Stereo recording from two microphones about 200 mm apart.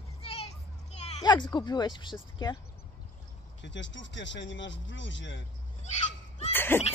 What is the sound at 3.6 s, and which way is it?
Speech, 65° left (ahead or behind).